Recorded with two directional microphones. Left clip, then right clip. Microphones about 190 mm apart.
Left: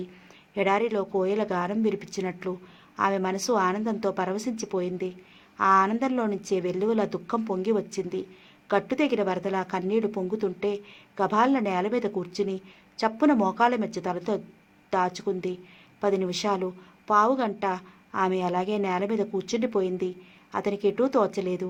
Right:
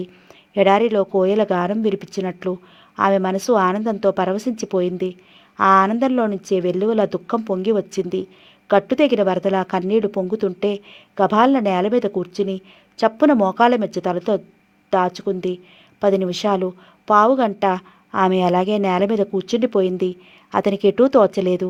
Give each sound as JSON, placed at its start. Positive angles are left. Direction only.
{"t": 0.5, "sound": "a woman's voice", "side_deg": -40}